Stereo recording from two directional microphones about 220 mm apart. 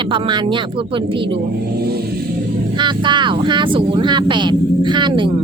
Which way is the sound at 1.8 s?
45° right (ahead or behind).